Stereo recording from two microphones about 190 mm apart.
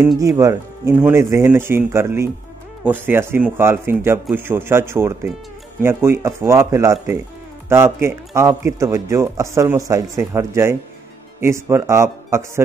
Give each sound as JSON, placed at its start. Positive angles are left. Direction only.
{"t": 0.2, "sound": "speech", "side_deg": -15}